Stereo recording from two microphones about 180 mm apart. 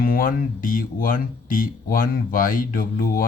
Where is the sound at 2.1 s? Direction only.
50° left (ahead or behind).